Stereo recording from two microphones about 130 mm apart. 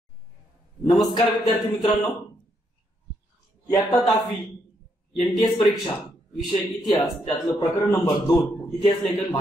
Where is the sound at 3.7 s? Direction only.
30° left (ahead or behind).